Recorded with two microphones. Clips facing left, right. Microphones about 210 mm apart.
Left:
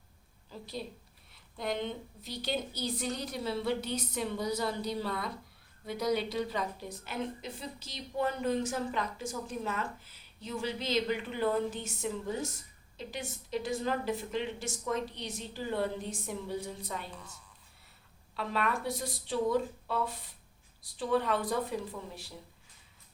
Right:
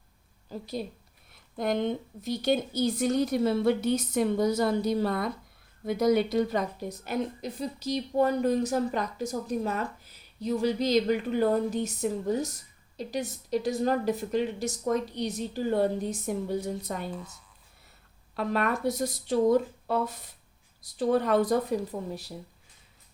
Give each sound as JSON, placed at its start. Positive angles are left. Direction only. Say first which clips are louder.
{"t": 0.5, "sound": "a woman's voice", "louder": "right 6 dB", "side_deg": -45}
{"t": 18.3, "sound": "a woman's voice", "louder": "right 5 dB", "side_deg": -45}